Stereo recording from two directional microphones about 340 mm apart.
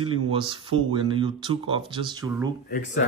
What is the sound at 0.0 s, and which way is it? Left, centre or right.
Speech, centre.